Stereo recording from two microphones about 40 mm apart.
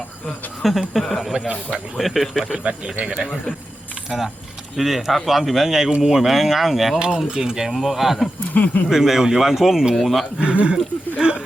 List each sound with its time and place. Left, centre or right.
0.9 s a man's voice: centre
1.3 s speech: right
2.0 s a man's voice: centre
2.6 s speech: right
3.0 s a man's voice: centre
7.3 s speech: centre
7.7 s a man's voice: centre
8.5 s speech: left
8.9 s a man's voice: centre
9.9 s a man's voice: centre
10.4 s speech: right